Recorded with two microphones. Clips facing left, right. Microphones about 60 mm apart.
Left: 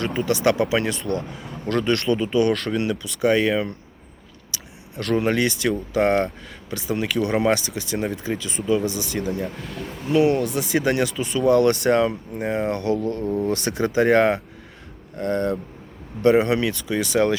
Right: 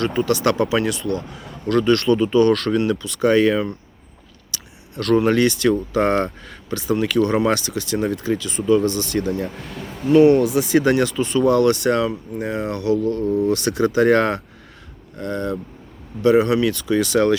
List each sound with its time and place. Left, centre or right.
0.3 s speech: centre
0.9 s speech: left; by 3.7 s centre
4.5 s a sound: centre
5.2 s speech: centre
6.9 s speech: centre
7.7 s speech: centre
11.5 s speech: left
15.2 s speech: left
16.2 s speech: left
16.7 s speech: centre